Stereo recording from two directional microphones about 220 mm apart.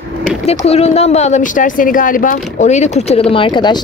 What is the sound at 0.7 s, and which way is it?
Speech, 30° left (ahead or behind).